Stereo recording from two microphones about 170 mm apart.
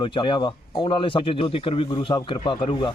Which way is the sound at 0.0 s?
30° left (ahead or behind).